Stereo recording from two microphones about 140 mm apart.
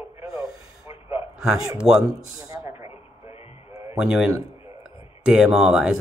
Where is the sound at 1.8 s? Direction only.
5° right (ahead or behind).